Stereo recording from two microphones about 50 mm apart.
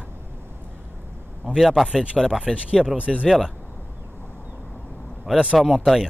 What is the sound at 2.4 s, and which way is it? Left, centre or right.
Speech, centre.